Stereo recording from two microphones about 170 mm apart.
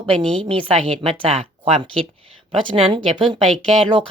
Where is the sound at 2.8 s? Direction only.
30° right (ahead or behind).